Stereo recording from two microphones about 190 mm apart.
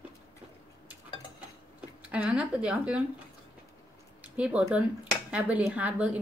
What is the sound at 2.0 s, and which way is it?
Speech, 5° right (ahead or behind).